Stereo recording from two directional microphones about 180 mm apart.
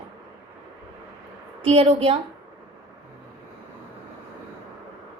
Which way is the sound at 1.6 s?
30° right (ahead or behind).